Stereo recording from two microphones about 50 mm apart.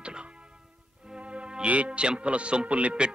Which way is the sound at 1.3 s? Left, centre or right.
Right.